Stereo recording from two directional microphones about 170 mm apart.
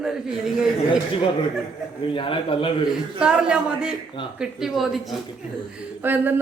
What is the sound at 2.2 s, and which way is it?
Speech, 30° left (ahead or behind).